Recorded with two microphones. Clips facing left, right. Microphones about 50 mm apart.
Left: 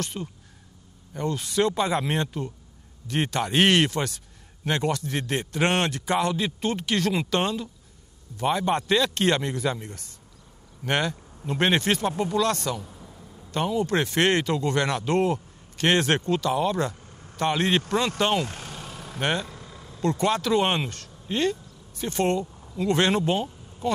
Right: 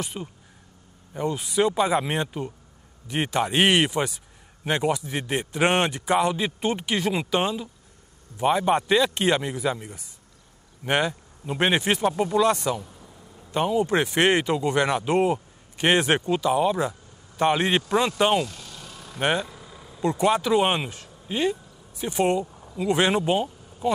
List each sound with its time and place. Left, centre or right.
0.0 s a man's voice: centre
12.8 s a sound: centre
13.4 s a man's voice: centre
18.4 s vehicle: left
19.1 s speech: centre